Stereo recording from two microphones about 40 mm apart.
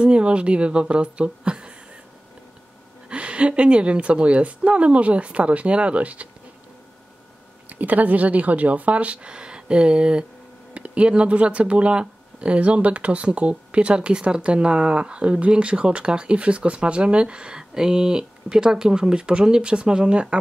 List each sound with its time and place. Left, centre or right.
0.0 s speech: right
3.1 s a woman's voice: right
7.7 s a woman's voice: right